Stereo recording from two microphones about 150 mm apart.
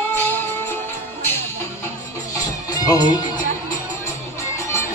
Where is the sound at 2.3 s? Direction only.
25° left (ahead or behind).